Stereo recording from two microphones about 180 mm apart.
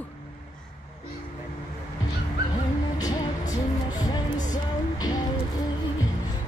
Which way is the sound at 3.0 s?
20° left (ahead or behind).